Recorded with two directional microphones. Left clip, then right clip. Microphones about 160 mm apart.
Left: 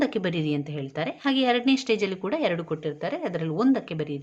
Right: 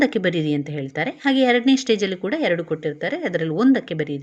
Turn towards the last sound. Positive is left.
turn(degrees=-20)  # may be behind; listen again after turning